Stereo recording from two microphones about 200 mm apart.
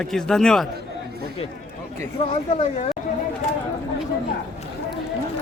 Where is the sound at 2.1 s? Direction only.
30° left (ahead or behind).